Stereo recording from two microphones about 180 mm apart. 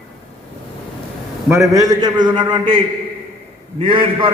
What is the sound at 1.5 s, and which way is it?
A man's voice, 20° right (ahead or behind).